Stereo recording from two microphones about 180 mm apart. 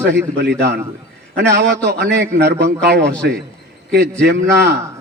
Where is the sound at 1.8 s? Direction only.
70° right (ahead or behind).